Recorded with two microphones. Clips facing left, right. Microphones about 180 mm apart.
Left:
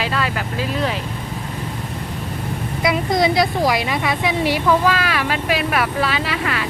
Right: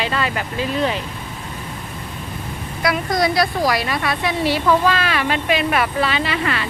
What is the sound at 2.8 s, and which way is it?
A woman's voice, 20° left (ahead or behind).